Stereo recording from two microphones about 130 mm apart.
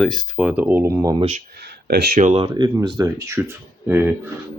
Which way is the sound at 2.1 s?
75° right (ahead or behind).